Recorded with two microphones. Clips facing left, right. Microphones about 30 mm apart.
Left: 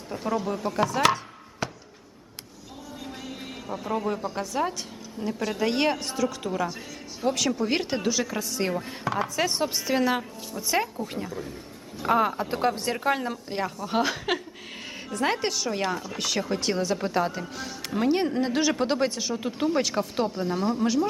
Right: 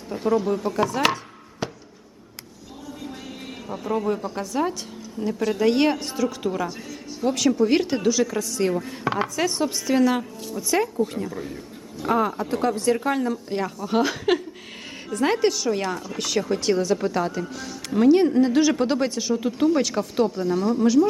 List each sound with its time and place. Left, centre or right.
0.1 s speech: centre
1.6 s a sound: centre
3.0 s a sound: centre
5.2 s speech: centre
11.3 s speech: centre
11.9 s speech: centre